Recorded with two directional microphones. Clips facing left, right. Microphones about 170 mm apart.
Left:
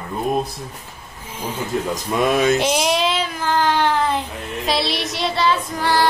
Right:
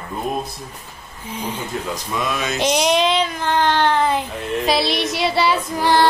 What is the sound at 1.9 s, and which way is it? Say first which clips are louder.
Speech: left 8 dB; 55° left (ahead or behind).